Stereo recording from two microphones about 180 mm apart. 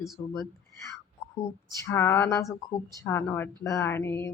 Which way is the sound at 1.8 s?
15° left (ahead or behind).